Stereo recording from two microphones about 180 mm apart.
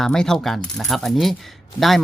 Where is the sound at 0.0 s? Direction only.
5° left (ahead or behind).